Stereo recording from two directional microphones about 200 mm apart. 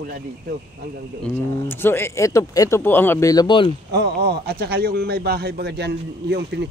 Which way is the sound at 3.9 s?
55° right (ahead or behind).